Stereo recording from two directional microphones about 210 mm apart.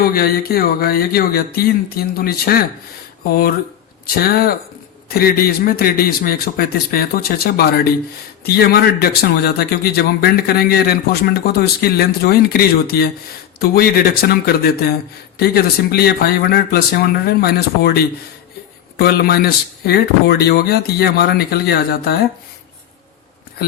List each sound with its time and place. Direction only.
0.0 s a man's voice: 45° left (ahead or behind)